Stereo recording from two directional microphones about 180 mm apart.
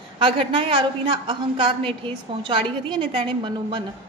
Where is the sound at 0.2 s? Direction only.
30° right (ahead or behind).